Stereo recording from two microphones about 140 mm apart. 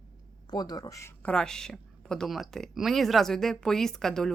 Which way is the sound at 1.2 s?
5° left (ahead or behind).